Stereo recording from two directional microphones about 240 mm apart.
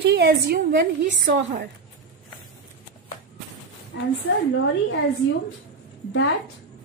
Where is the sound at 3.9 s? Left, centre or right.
Left.